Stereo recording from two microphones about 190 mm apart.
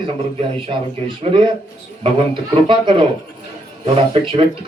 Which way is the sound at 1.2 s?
30° right (ahead or behind).